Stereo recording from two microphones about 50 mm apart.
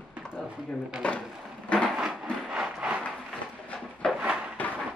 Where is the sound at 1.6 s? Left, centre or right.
Centre.